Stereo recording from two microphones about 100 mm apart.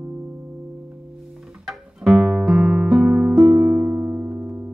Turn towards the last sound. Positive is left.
turn(degrees=-15)  # may be behind; listen again after turning